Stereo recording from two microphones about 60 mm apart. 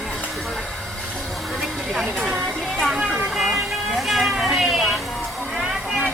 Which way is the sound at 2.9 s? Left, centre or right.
Centre.